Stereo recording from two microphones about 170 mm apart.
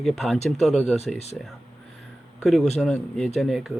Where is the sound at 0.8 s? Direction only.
40° left (ahead or behind).